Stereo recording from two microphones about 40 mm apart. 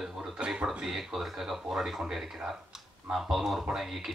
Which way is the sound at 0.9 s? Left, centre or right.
Centre.